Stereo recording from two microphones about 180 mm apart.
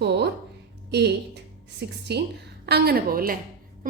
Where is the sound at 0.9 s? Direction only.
65° right (ahead or behind).